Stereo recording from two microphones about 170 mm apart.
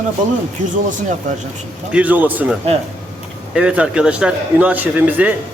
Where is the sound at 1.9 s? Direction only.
10° right (ahead or behind).